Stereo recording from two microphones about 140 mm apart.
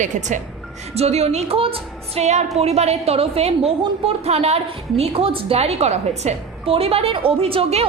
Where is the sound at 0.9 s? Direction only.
50° right (ahead or behind).